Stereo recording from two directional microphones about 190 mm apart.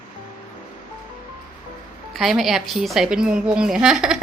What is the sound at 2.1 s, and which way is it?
A woman's voice, centre (ahead or behind).